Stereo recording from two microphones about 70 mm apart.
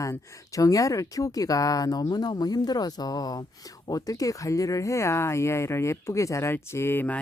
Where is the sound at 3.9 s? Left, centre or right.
Left.